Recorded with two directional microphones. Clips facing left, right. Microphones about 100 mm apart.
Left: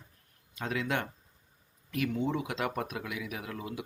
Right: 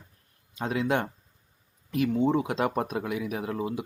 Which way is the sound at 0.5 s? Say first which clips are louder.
Right 6 dB; 25° right (ahead or behind).